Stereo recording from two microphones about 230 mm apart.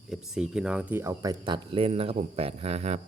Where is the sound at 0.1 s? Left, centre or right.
Centre.